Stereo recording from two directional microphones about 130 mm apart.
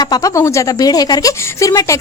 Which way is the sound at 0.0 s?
30° left (ahead or behind).